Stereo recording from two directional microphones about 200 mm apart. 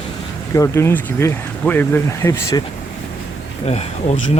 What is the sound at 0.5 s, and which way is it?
Speech, 15° left (ahead or behind).